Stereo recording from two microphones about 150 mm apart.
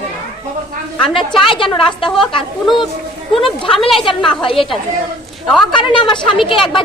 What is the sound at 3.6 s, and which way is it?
Speech, 35° left (ahead or behind).